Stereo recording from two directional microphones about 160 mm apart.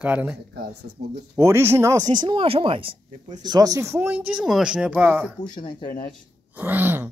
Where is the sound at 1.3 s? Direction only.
15° right (ahead or behind); by 3.0 s 35° right (ahead or behind).